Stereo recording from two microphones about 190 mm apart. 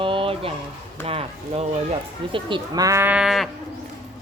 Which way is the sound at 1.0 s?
30° right (ahead or behind).